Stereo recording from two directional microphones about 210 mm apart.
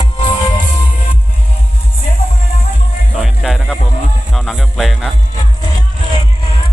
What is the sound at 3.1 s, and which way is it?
Music, centre (ahead or behind).